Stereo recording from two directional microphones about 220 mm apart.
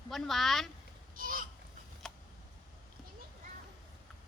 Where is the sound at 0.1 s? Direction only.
Centre (ahead or behind).